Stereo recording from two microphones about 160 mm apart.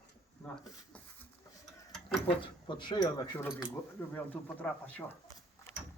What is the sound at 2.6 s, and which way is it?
Speech, 30° left (ahead or behind).